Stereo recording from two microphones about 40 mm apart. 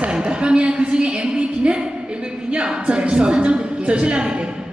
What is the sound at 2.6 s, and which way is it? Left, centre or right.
A woman's voice, right.